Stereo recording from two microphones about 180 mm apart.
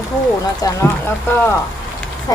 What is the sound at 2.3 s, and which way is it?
Speech, 20° left (ahead or behind).